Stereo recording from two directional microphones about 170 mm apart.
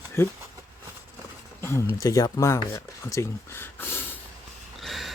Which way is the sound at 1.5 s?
15° left (ahead or behind).